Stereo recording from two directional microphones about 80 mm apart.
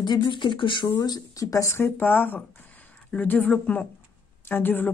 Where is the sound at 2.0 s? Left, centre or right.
Left.